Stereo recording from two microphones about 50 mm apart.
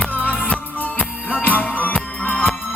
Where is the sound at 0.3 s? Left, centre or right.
Left.